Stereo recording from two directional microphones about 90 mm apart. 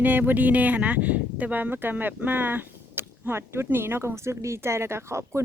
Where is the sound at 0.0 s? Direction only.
20° right (ahead or behind).